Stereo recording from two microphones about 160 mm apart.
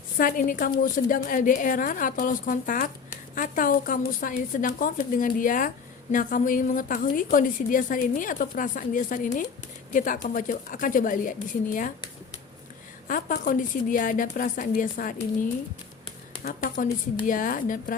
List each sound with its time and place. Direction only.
0.2 s speech: 60° left (ahead or behind)
13.1 s speech: 60° left (ahead or behind)
16.4 s speech: 60° left (ahead or behind)